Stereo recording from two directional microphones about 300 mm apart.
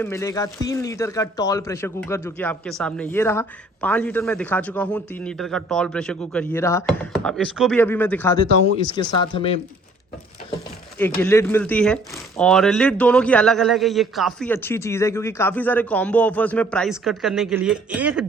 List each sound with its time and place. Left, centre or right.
0.0 s a man's voice: centre
10.9 s a man's voice: centre